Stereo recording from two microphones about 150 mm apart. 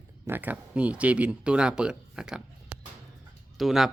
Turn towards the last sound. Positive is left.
turn(degrees=0)  # may be behind; listen again after turning